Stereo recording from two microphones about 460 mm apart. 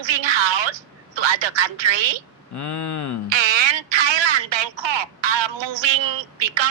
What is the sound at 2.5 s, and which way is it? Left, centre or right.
Speech, left.